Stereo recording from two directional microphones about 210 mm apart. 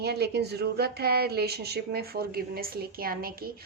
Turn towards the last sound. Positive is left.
turn(degrees=-45)  # may be behind; listen again after turning